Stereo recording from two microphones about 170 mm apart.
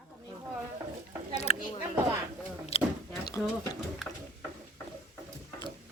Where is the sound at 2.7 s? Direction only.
35° left (ahead or behind).